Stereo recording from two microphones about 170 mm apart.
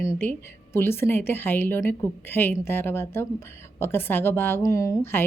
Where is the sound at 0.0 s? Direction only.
15° left (ahead or behind).